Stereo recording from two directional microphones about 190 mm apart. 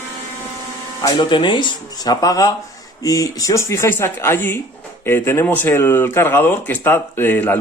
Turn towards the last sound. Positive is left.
turn(degrees=10)  # may be behind; listen again after turning